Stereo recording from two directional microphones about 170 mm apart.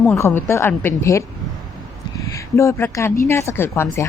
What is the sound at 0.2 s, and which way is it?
A woman's voice, 15° left (ahead or behind).